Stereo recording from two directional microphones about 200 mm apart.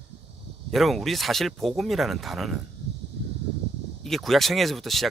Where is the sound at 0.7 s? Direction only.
Centre (ahead or behind).